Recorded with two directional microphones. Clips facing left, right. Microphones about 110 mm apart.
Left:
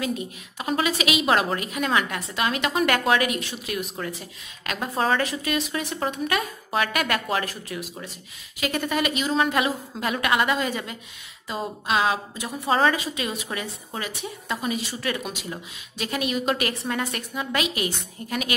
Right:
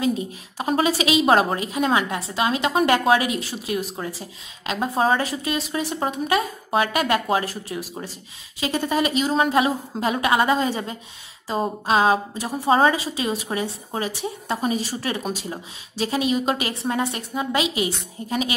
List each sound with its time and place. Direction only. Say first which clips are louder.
0.0 s a woman's voice: right 5 dB; 30° right (ahead or behind)